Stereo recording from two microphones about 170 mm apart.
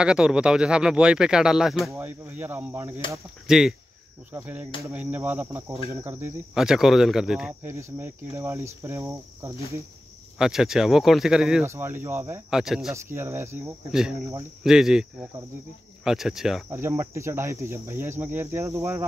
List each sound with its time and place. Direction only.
0.0 s speech: 5° right (ahead or behind)
7.6 s speech: 15° right (ahead or behind)
10.4 s speech: centre (ahead or behind)
11.6 s speech: 15° right (ahead or behind)
12.4 s speech: 5° right (ahead or behind)
12.9 s speech: 15° right (ahead or behind)
14.6 s speech: centre (ahead or behind)
16.7 s speech: 15° right (ahead or behind)